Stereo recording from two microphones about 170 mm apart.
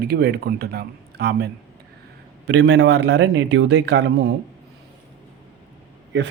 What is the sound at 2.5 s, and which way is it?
A man's voice, 90° right.